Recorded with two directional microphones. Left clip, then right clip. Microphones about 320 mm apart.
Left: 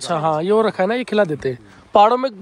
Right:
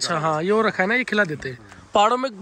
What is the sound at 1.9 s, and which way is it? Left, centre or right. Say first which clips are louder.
Speech: left 5 dB; centre.